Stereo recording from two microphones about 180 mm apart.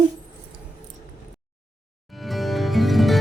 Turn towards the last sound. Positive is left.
turn(degrees=0)  # may be behind; listen again after turning